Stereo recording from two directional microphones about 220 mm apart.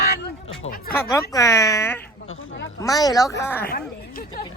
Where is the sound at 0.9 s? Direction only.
10° left (ahead or behind).